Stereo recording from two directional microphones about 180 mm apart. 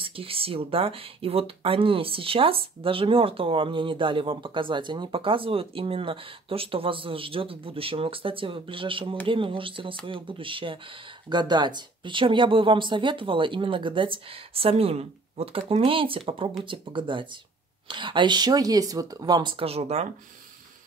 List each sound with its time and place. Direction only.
0.0 s speech: 30° right (ahead or behind)